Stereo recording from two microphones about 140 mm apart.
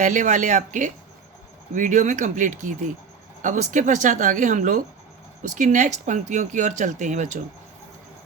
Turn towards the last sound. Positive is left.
turn(degrees=-60)  # may be behind; listen again after turning